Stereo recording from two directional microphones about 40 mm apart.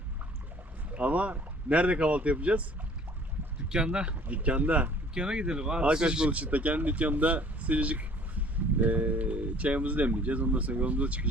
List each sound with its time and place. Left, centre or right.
0.9 s speech: right
3.7 s speech: right
4.1 s speech: right
5.1 s speech: right
6.3 s speech: right